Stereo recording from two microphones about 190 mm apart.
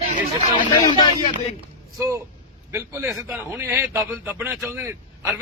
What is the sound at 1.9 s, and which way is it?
Speech, 15° right (ahead or behind).